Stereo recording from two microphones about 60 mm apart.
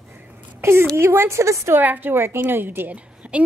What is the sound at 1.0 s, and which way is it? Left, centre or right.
Speech, right.